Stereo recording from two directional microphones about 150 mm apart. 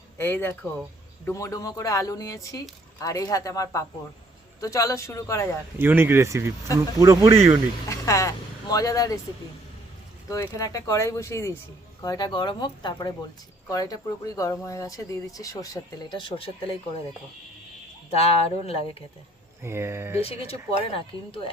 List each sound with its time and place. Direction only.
0.2 s speech: 15° left (ahead or behind)
5.8 s speech: 15° right (ahead or behind)
7.9 s speech: 20° left (ahead or behind)
10.2 s speech: 20° left (ahead or behind); by 16.7 s 35° left (ahead or behind)
18.1 s speech: 40° left (ahead or behind)
19.6 s speech: 15° right (ahead or behind)
20.2 s speech: 40° left (ahead or behind)